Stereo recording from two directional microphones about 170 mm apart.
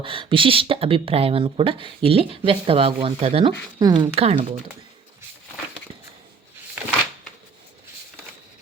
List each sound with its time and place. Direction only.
0.0 s speech: 30° right (ahead or behind)
3.8 s speech: 25° right (ahead or behind)